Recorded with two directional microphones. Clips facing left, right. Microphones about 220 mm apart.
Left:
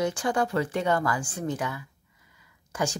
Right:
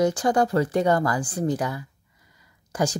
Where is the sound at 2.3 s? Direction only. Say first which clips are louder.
Right 4 dB; 35° right (ahead or behind).